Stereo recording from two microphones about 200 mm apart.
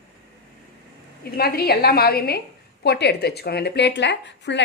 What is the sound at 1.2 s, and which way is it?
A woman's voice, 50° left (ahead or behind).